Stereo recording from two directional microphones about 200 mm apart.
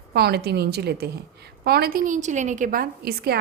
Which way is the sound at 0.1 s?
55° right (ahead or behind).